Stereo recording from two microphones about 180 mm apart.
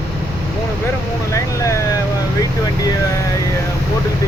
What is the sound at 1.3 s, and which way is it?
Speech, 15° left (ahead or behind).